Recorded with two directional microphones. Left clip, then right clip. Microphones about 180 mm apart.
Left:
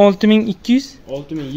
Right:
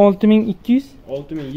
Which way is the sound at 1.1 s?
40° left (ahead or behind).